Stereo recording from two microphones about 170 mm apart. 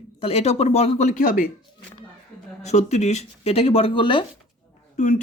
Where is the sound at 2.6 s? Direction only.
40° left (ahead or behind).